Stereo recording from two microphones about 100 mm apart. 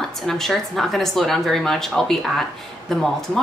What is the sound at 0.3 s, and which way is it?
Speech, 5° left (ahead or behind).